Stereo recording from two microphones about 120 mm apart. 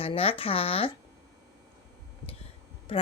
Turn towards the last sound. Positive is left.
turn(degrees=50)  # may be behind; listen again after turning